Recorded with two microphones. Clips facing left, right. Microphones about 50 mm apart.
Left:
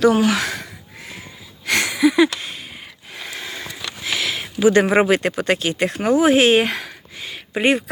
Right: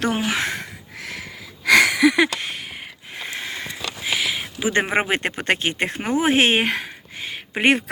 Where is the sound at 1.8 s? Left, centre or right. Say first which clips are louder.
Right 1 dB; right.